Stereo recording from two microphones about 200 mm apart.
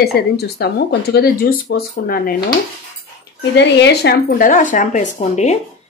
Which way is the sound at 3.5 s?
55° left (ahead or behind).